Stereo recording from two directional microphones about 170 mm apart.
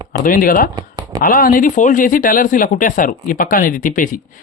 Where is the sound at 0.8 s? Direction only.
20° right (ahead or behind).